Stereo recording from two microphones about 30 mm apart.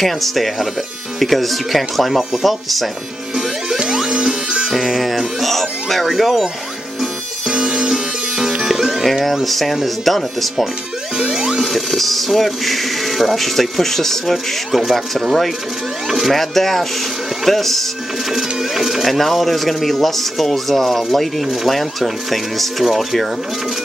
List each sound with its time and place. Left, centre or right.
0.0 s speech: centre
4.1 s music: centre
4.6 s music: centre
6.1 s speech: centre
7.9 s music: centre
9.2 s speech: centre
11.1 s music: centre
11.6 s speech: centre
14.2 s speech: centre
16.1 s speech: centre
16.3 s speech: centre
18.3 s speech: centre
19.1 s speech: centre